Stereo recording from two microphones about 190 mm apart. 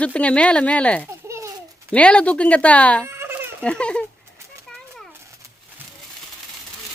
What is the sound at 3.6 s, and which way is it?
Speech, 5° left (ahead or behind).